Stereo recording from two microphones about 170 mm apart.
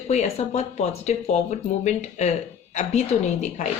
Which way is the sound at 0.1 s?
40° left (ahead or behind).